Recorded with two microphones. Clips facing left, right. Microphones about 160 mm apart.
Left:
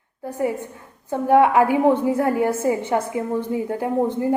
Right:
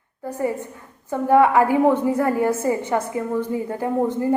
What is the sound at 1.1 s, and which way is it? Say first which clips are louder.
A woman's voice: even; 15° left (ahead or behind).